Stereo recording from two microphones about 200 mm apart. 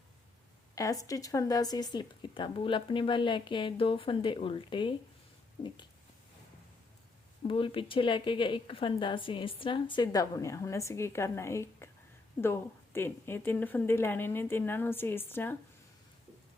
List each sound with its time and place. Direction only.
0.8 s a woman's voice: 15° left (ahead or behind)
7.4 s a woman's voice: 25° left (ahead or behind); by 15.5 s 10° left (ahead or behind)